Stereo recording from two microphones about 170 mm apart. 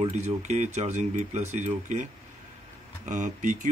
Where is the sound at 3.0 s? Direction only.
50° right (ahead or behind).